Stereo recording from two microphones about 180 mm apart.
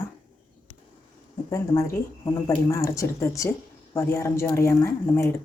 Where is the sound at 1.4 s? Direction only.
15° left (ahead or behind).